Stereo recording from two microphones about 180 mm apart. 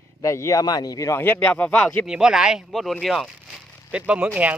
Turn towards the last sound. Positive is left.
turn(degrees=-10)  # may be behind; listen again after turning